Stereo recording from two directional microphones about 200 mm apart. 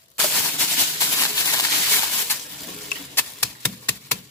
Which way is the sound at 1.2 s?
15° left (ahead or behind).